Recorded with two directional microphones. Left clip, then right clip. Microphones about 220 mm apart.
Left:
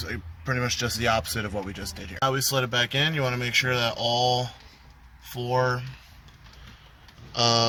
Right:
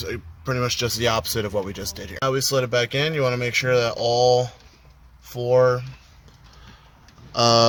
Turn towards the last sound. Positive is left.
turn(degrees=-35)  # may be behind; listen again after turning